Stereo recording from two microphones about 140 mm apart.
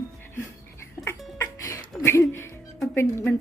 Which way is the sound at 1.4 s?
20° left (ahead or behind).